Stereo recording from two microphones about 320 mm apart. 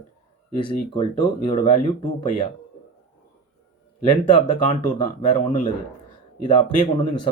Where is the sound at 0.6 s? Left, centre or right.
Centre.